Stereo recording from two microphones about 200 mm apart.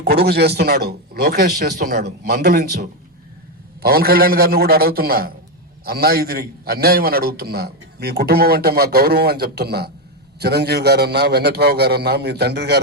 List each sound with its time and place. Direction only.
0.0 s a man's voice: 55° right (ahead or behind)
3.8 s a man's voice: 50° right (ahead or behind)